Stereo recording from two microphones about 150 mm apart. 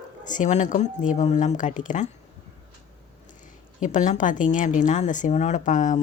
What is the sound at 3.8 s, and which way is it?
Speech, 55° left (ahead or behind).